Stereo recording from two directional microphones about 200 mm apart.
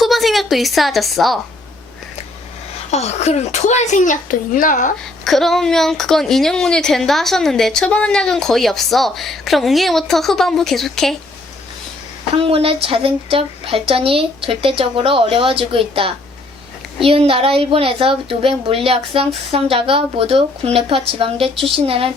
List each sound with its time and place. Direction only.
0.0 s a woman's voice: centre (ahead or behind)
2.9 s speech: 35° left (ahead or behind)
5.2 s a woman's voice: centre (ahead or behind)
12.5 s a woman's voice: 25° right (ahead or behind)